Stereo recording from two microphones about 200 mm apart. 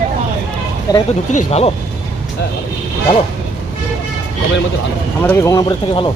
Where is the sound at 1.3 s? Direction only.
35° left (ahead or behind).